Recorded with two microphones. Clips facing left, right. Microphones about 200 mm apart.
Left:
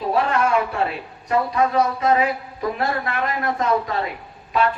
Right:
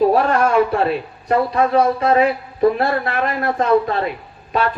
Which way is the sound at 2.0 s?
30° right (ahead or behind).